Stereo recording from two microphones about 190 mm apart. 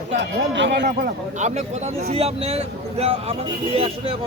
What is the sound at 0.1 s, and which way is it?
Speech, 65° right (ahead or behind).